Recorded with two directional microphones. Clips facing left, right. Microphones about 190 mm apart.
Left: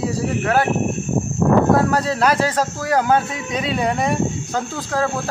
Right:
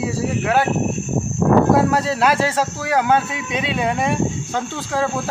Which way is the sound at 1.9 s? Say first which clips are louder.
Even; 5° right (ahead or behind).